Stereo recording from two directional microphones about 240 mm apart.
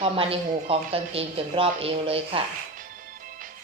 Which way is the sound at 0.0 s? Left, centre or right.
Right.